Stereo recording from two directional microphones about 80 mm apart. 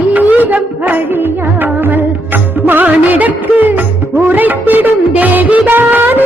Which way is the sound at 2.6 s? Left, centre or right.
Right.